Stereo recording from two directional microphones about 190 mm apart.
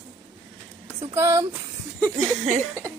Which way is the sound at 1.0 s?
15° right (ahead or behind).